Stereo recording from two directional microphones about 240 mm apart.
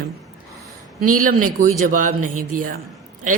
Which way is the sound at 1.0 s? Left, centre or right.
Right.